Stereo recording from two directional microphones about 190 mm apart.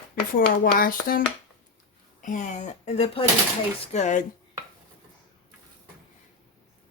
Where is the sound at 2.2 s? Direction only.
40° left (ahead or behind).